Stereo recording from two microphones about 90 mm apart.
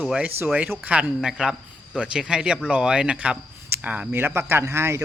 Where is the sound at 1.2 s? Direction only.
5° right (ahead or behind).